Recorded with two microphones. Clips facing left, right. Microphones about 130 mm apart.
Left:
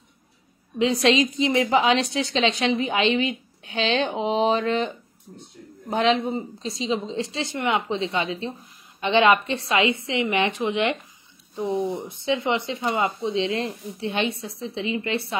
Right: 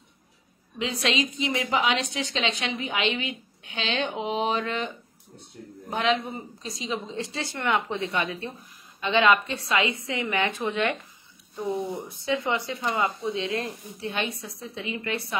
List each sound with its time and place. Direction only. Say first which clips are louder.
1.4 s a woman's voice: left 4 dB; 35° left (ahead or behind)